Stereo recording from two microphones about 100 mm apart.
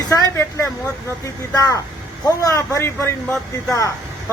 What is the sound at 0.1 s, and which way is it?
Speech, 30° left (ahead or behind).